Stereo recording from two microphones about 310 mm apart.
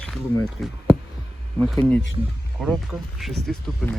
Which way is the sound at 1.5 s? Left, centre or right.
Centre.